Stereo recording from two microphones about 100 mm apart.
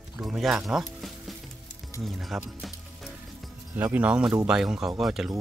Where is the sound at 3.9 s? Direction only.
10° right (ahead or behind).